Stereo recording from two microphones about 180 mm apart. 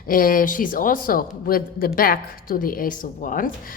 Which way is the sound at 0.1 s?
50° left (ahead or behind).